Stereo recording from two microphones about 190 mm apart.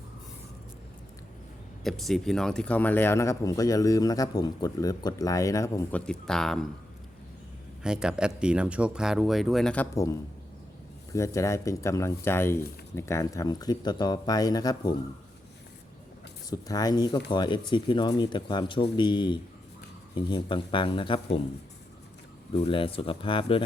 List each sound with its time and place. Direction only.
1.8 s speech: centre (ahead or behind); by 6.0 s 15° left (ahead or behind)
6.1 s speech: 5° left (ahead or behind)
7.8 s speech: 5° right (ahead or behind)
9.9 s speech: 15° left (ahead or behind)
16.5 s speech: 20° left (ahead or behind)
22.6 s speech: 30° left (ahead or behind)